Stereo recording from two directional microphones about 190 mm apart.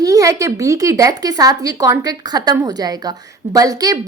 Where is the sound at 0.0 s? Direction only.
20° right (ahead or behind).